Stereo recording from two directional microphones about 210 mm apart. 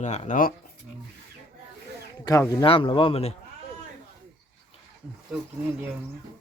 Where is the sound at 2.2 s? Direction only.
15° left (ahead or behind).